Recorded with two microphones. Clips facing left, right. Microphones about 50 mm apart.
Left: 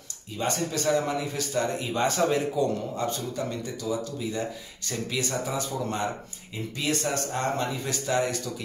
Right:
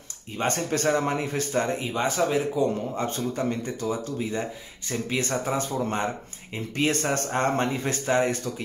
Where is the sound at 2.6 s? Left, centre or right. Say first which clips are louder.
Right 1 dB; right.